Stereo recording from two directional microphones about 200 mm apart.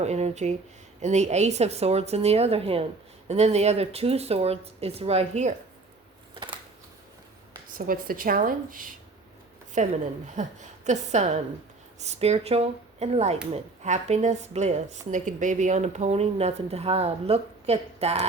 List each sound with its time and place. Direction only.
0.0 s a woman's voice: 35° right (ahead or behind)
7.8 s a woman's voice: 45° right (ahead or behind)